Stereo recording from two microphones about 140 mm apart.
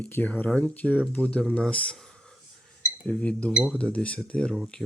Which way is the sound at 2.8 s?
10° left (ahead or behind).